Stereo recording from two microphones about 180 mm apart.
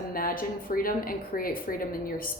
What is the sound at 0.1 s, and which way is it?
Speech, 50° left (ahead or behind).